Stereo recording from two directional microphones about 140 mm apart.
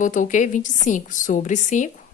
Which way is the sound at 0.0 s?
65° left (ahead or behind).